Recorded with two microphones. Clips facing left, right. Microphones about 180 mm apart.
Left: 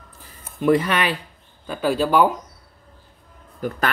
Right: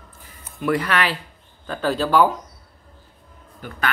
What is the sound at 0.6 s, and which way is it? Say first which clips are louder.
Speech: left 3 dB; 20° left (ahead or behind).